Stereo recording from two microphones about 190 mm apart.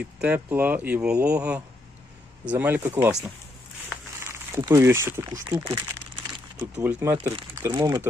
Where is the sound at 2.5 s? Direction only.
10° right (ahead or behind).